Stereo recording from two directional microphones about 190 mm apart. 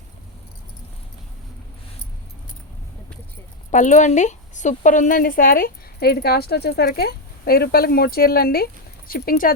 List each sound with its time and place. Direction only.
3.7 s a woman's voice: 40° left (ahead or behind)